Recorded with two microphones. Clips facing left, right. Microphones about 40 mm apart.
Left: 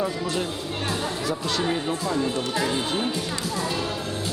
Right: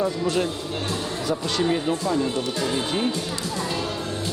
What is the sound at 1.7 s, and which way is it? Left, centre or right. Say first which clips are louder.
A woman's voice: right 2 dB; centre.